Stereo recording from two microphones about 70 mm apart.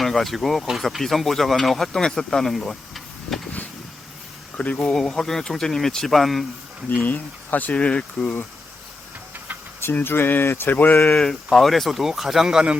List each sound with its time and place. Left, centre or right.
0.0 s speech: centre
4.5 s speech: left
4.9 s speech: centre
7.0 s speech: left
9.9 s speech: left
11.1 s speech: centre